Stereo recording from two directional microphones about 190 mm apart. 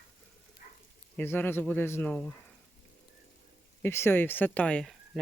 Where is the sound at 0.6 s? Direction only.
45° left (ahead or behind).